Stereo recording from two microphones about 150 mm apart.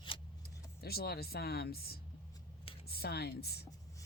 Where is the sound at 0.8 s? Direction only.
90° left.